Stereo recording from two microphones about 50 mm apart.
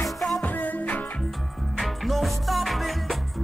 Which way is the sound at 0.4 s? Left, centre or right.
Left.